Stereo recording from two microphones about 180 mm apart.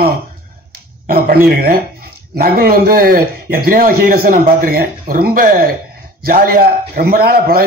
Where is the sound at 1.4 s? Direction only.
60° right (ahead or behind).